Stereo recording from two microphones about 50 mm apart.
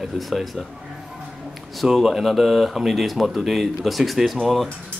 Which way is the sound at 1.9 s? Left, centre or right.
Centre.